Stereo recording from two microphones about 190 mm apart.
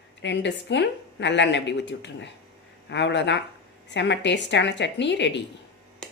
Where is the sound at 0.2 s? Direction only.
70° left (ahead or behind).